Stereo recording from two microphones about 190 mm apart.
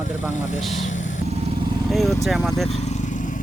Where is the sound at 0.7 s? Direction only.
40° left (ahead or behind).